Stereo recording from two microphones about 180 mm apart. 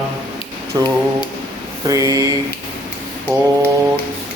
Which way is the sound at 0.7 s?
25° right (ahead or behind).